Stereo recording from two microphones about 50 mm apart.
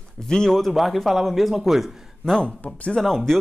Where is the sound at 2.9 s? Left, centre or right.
Centre.